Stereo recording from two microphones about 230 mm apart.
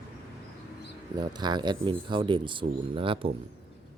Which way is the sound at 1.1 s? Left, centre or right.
Centre.